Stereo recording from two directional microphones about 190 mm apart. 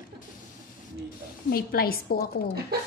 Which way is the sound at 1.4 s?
50° left (ahead or behind).